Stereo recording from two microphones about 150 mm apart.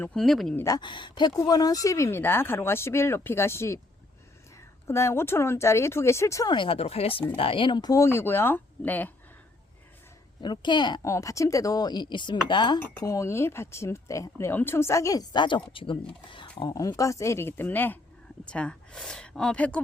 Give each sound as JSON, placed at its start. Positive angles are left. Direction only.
{"t": 0.0, "sound": "speech", "side_deg": 5}
{"t": 0.5, "sound": "speech", "side_deg": 20}
{"t": 4.9, "sound": "speech", "side_deg": 15}
{"t": 10.4, "sound": "speech", "side_deg": 30}